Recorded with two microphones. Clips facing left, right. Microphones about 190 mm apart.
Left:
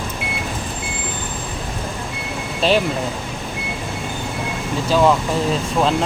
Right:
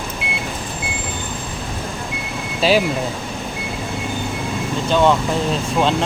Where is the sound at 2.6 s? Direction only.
5° right (ahead or behind).